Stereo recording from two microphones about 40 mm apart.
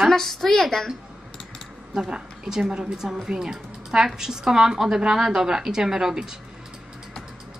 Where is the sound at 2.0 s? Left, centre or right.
Centre.